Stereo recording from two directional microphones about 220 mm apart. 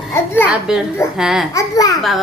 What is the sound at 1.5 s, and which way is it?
Speech, 15° left (ahead or behind).